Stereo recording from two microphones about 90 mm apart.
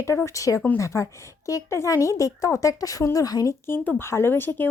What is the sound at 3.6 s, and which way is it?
Speech, 20° left (ahead or behind).